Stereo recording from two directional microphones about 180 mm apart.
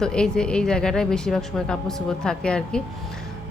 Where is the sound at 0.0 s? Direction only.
5° left (ahead or behind).